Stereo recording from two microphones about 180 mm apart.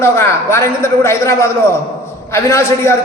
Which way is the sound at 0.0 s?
15° left (ahead or behind).